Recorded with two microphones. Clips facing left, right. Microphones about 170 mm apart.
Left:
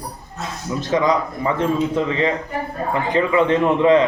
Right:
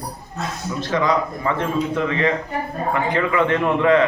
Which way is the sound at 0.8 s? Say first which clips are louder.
Left 2 dB; 15° left (ahead or behind).